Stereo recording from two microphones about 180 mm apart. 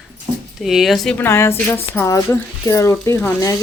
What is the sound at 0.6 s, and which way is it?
Speech, centre (ahead or behind).